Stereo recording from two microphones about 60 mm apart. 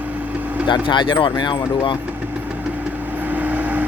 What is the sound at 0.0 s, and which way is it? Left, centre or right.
Vehicle, right.